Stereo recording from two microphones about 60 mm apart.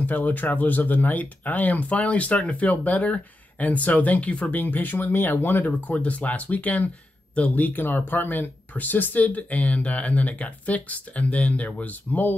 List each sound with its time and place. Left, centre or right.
0.0 s speech: left
5.7 s speech: left